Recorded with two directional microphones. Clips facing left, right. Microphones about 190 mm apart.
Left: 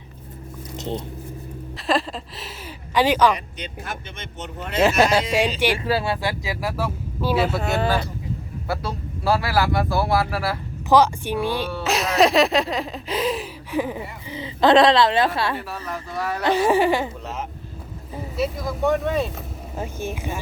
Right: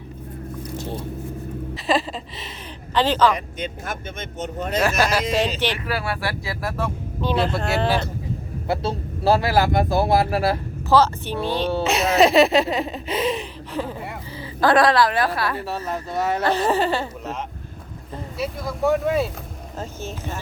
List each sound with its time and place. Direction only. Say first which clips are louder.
0.8 s speech: left 4 dB; 20° left (ahead or behind)
1.7 s a sound: even; centre (ahead or behind)
3.3 s speech: right 4 dB; 45° right (ahead or behind)
4.8 s speech: left 4 dB; 20° left (ahead or behind)
5.5 s speech: left 3 dB; 10° left (ahead or behind)
5.8 s speech: left 3 dB; 25° left (ahead or behind); by 7.9 s 5° left (ahead or behind)
8.6 s a man's voice: right 4 dB; 25° right (ahead or behind)
10.8 s speech: left 1 dB; 15° left (ahead or behind)
11.8 s a sound: right 1 dB; centre (ahead or behind)
13.7 s speech: left 4 dB; 15° left (ahead or behind)
15.6 s a man's voice: right 4 dB; 25° right (ahead or behind)
16.4 s speech: left 5 dB; 10° left (ahead or behind)
18.1 s a sound: left 3 dB; 5° left (ahead or behind)
19.7 s speech: left 3 dB; 10° left (ahead or behind)